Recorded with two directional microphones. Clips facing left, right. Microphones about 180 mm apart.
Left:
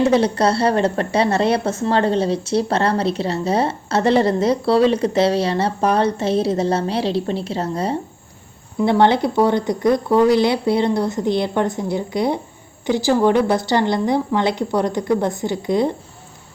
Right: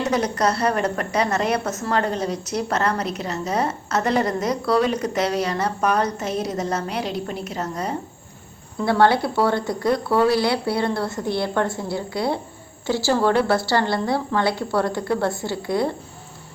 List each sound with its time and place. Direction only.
0.0 s speech: 30° left (ahead or behind)
8.8 s speech: 20° left (ahead or behind)